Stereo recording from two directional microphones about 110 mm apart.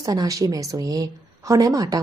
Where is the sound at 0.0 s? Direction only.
35° right (ahead or behind).